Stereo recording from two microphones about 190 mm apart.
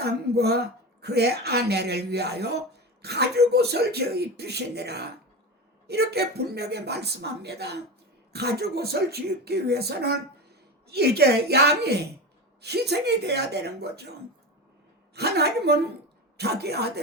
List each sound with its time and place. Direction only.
0.0 s speech: 60° right (ahead or behind)
15.1 s speech: 60° right (ahead or behind)